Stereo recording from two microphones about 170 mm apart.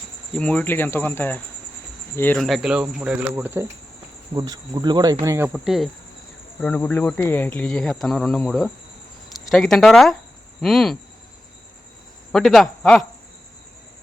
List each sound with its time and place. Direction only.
0.3 s speech: 5° left (ahead or behind)
2.4 s speech: centre (ahead or behind)
4.4 s speech: 25° right (ahead or behind)
5.5 s speech: centre (ahead or behind)
12.3 s speech: centre (ahead or behind)